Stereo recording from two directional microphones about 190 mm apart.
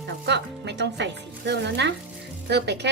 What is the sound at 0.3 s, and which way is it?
Speech, 65° right (ahead or behind).